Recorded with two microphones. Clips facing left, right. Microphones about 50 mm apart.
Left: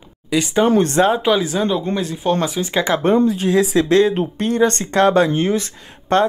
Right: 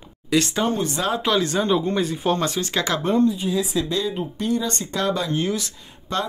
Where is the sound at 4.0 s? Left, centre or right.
Left.